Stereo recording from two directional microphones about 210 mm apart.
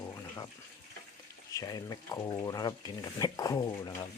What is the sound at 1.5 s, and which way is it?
Speech, 15° left (ahead or behind).